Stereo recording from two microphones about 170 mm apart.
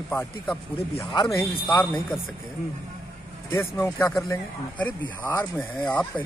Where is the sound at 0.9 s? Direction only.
20° left (ahead or behind).